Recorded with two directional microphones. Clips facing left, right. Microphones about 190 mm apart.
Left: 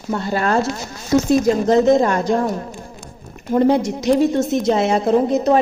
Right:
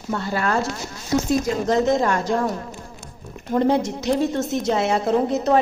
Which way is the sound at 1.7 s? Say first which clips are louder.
Left 5 dB; 20° left (ahead or behind).